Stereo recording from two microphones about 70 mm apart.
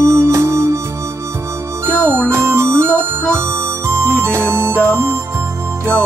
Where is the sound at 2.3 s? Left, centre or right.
Right.